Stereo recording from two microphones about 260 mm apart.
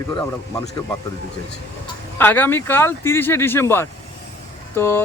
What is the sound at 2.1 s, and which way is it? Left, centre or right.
Speech, centre.